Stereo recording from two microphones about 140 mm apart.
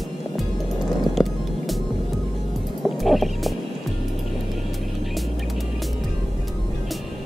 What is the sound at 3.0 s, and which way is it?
Music, centre (ahead or behind).